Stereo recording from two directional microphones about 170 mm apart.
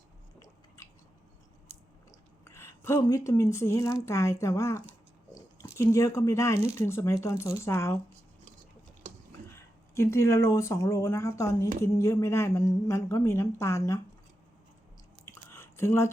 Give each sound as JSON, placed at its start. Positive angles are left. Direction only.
{"t": 2.4, "sound": "speech", "side_deg": 15}
{"t": 9.5, "sound": "speech", "side_deg": 15}
{"t": 15.2, "sound": "a sound", "side_deg": 15}